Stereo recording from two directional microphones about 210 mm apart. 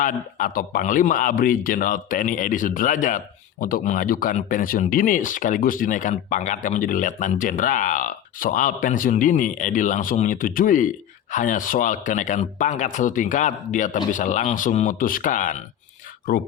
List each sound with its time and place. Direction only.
0.0 s speech: 40° left (ahead or behind)